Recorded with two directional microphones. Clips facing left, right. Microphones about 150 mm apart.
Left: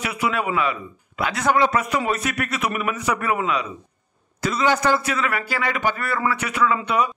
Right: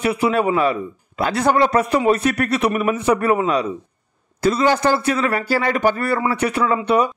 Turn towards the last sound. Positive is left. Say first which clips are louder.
# right 3 dB
turn(degrees=-30)  # may be behind; listen again after turning